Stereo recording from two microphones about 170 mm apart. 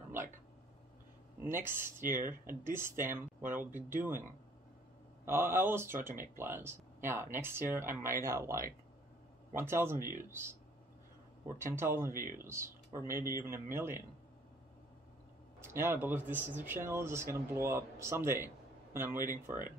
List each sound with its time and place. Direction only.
1.4 s speech: 15° right (ahead or behind)
5.2 s speech: 15° right (ahead or behind)
15.6 s speech: 15° right (ahead or behind)